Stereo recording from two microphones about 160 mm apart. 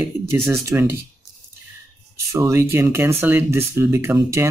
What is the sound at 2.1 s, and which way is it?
Speech, 20° right (ahead or behind).